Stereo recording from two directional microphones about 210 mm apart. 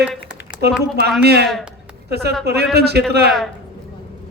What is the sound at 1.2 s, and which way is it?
A man's voice, 50° right (ahead or behind).